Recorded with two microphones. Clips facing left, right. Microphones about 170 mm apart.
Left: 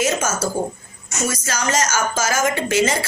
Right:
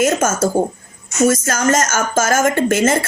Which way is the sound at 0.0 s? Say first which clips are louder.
Right 5 dB; 50° right (ahead or behind).